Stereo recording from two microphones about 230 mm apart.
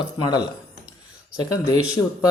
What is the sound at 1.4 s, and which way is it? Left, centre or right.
Speech, centre.